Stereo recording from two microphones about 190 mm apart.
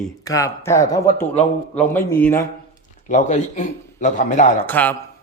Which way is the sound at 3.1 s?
40° left (ahead or behind).